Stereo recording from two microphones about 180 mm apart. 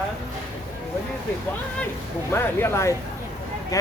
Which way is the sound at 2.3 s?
15° left (ahead or behind).